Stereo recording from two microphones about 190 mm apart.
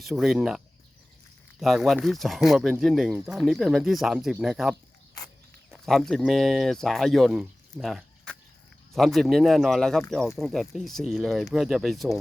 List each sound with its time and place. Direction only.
0.0 s speech: centre (ahead or behind)